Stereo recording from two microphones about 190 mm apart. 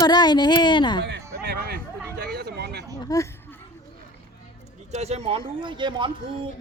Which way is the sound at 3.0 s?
20° left (ahead or behind).